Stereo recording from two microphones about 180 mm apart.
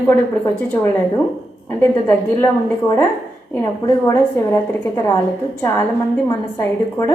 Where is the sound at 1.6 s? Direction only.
10° left (ahead or behind).